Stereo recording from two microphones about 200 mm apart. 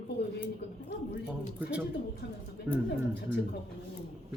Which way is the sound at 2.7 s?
5° right (ahead or behind).